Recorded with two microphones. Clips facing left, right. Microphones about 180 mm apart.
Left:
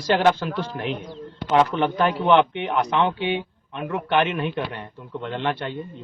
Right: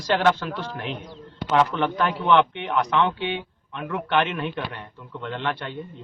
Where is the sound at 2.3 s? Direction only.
10° left (ahead or behind).